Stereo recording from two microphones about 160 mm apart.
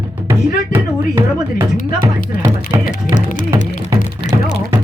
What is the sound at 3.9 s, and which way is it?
Music, 20° right (ahead or behind).